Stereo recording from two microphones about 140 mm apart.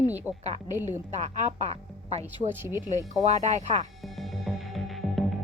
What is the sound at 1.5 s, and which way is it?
Speech, 50° right (ahead or behind).